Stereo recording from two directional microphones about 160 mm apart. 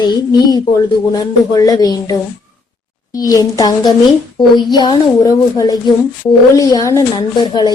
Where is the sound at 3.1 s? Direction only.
20° left (ahead or behind).